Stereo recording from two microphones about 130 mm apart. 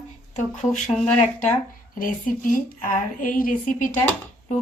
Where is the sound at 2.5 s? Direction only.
90° left.